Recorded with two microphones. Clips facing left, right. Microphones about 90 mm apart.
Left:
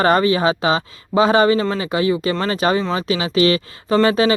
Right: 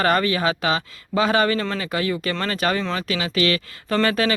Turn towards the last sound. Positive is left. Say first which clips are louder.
# left 5 dB
turn(degrees=20)  # may be behind; listen again after turning